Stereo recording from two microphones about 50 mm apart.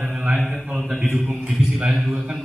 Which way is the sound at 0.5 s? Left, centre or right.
Centre.